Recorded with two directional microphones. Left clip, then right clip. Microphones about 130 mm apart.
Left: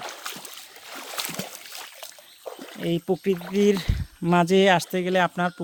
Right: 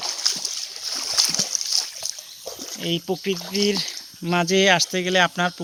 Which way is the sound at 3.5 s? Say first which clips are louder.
Even; 90° left.